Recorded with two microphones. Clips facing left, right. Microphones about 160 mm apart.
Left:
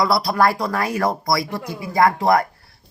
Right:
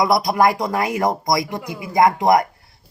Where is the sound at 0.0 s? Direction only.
20° right (ahead or behind).